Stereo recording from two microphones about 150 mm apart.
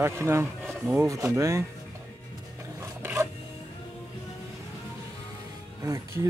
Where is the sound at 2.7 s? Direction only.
20° right (ahead or behind).